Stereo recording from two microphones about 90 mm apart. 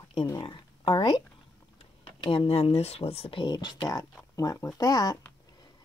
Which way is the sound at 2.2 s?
75° left (ahead or behind).